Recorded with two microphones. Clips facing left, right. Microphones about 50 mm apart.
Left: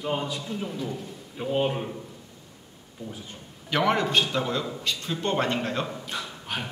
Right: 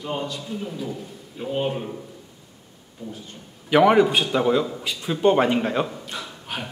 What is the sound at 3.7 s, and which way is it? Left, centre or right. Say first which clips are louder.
A man's voice: right 7 dB; centre.